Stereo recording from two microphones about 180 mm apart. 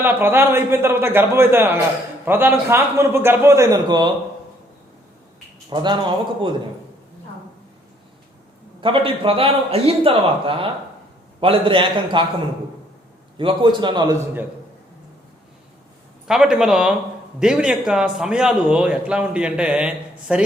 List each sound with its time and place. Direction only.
0.0 s a man's voice: 10° right (ahead or behind)
5.7 s a man's voice: 25° right (ahead or behind)
8.8 s a man's voice: 30° right (ahead or behind)
13.3 s a man's voice: 25° right (ahead or behind)
16.2 s a man's voice: 5° right (ahead or behind)